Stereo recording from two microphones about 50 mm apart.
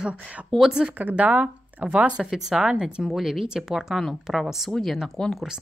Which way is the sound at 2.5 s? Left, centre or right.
Right.